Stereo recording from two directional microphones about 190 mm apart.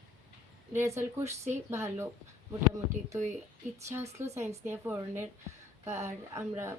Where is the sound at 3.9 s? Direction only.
15° right (ahead or behind).